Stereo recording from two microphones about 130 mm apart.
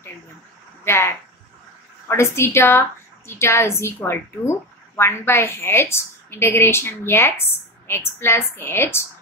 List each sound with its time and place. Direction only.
0.8 s a woman's voice: 20° left (ahead or behind)